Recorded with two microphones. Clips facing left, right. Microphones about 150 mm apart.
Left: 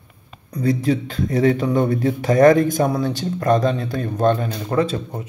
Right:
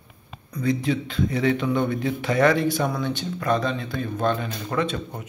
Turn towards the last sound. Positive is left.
turn(degrees=35)  # may be behind; listen again after turning